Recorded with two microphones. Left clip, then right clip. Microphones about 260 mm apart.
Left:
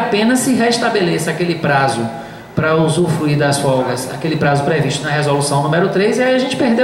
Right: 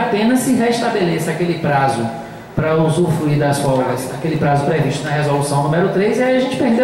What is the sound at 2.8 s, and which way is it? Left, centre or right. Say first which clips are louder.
Speech: right 1 dB; left.